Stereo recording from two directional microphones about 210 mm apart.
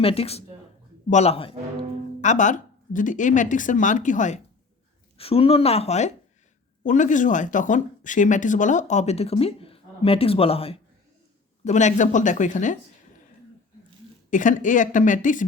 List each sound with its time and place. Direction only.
0.0 s a woman's voice: 25° left (ahead or behind)
14.3 s speech: 40° left (ahead or behind)